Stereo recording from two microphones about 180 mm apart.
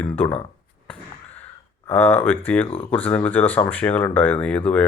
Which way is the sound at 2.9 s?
10° left (ahead or behind).